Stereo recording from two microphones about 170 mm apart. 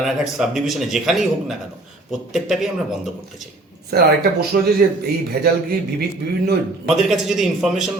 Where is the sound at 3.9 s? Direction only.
70° right (ahead or behind).